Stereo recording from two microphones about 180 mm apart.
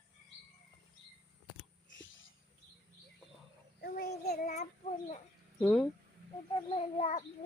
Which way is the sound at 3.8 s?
60° left (ahead or behind).